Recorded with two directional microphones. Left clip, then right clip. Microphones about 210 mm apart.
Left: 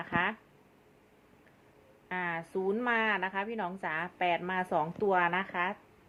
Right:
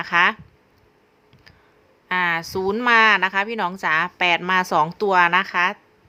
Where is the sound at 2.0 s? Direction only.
40° right (ahead or behind).